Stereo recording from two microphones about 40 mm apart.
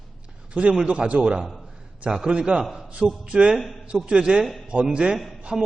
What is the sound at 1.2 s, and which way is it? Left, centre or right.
Speech, centre.